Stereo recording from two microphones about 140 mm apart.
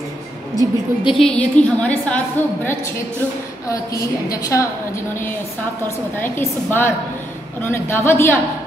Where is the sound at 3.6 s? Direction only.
20° left (ahead or behind).